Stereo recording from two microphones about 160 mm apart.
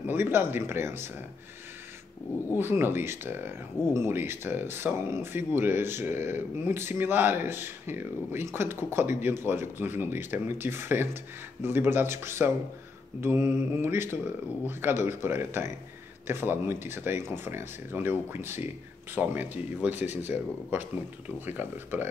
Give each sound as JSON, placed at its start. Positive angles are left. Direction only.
{"t": 0.0, "sound": "speech", "side_deg": -15}
{"t": 2.5, "sound": "speech", "side_deg": -15}